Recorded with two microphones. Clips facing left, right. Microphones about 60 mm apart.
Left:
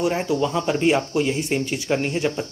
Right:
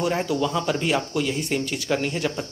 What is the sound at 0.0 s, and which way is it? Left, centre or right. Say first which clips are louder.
Speech: left 2 dB; centre.